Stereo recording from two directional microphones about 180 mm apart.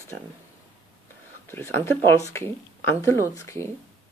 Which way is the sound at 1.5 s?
15° left (ahead or behind).